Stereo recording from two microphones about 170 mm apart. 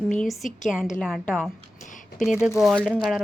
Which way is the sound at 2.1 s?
5° right (ahead or behind).